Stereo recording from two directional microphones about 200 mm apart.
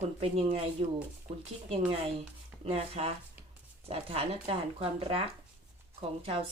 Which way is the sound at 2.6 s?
30° right (ahead or behind).